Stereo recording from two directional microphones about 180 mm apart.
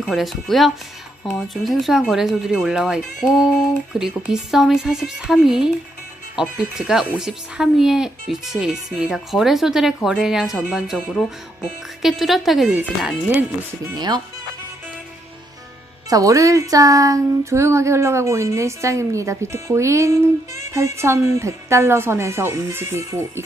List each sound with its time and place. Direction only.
0.0 s speech: centre (ahead or behind)
13.9 s speech: 25° right (ahead or behind)
16.1 s music: 20° right (ahead or behind)